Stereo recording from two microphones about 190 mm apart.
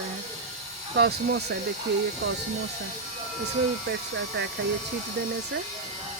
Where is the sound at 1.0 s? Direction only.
55° right (ahead or behind).